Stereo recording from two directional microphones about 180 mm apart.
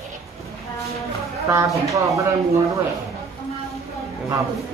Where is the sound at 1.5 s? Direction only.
15° right (ahead or behind).